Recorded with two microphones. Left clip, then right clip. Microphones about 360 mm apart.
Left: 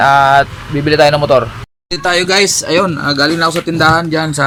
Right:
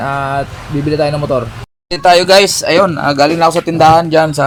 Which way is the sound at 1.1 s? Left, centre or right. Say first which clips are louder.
Left 5 dB; left.